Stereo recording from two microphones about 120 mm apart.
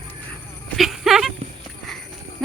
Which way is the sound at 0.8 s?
5° right (ahead or behind).